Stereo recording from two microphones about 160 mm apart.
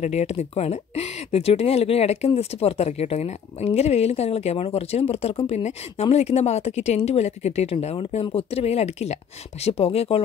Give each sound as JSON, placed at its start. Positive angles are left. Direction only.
{"t": 0.0, "sound": "speech", "side_deg": 40}